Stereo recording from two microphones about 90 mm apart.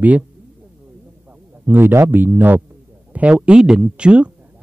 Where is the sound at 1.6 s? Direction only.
25° right (ahead or behind).